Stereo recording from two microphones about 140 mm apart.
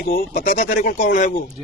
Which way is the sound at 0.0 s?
90° left.